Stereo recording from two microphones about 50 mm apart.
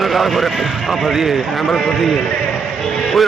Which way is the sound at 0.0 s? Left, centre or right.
Centre.